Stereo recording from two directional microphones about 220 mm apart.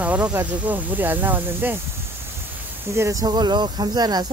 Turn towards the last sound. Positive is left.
turn(degrees=-20)  # may be behind; listen again after turning